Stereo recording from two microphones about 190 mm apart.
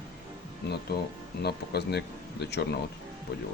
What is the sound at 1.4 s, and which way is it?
Speech, 60° left (ahead or behind).